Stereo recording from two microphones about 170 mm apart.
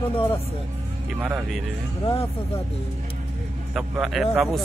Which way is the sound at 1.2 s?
5° right (ahead or behind).